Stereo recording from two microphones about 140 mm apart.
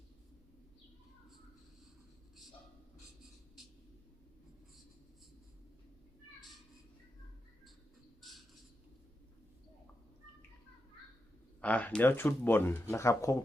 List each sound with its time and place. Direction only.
11.6 s speech: 10° left (ahead or behind)